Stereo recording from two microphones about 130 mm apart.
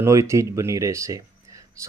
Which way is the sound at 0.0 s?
25° right (ahead or behind).